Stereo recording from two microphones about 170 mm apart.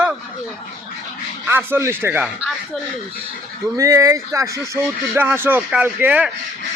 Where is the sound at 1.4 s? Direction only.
10° right (ahead or behind).